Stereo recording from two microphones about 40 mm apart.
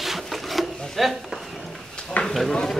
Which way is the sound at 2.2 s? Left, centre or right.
Left.